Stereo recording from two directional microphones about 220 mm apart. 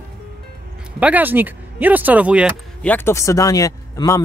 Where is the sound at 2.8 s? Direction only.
10° left (ahead or behind).